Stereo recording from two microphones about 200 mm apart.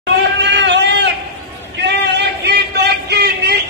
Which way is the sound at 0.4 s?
60° right (ahead or behind).